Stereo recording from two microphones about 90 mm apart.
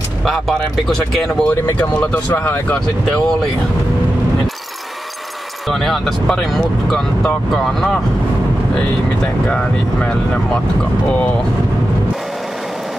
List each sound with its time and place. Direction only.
0.2 s speech: centre (ahead or behind)
1.5 s speech: 20° left (ahead or behind)
5.7 s speech: 5° left (ahead or behind)
10.0 s speech: 10° left (ahead or behind)